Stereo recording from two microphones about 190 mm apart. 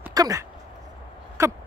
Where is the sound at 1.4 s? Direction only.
15° right (ahead or behind).